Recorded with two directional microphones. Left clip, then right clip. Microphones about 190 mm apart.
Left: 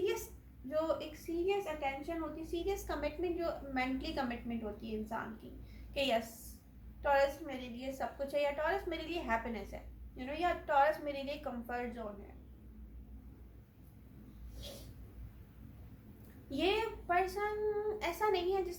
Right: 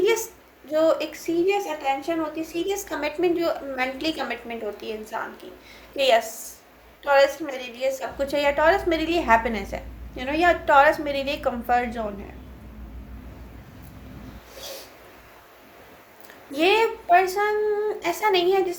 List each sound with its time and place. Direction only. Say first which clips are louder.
0.7 s a woman's voice: right 15 dB; 40° right (ahead or behind)
16.6 s a woman's voice: right 14 dB; 40° right (ahead or behind)